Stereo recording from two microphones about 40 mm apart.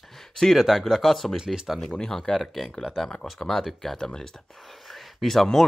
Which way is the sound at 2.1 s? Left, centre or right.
Centre.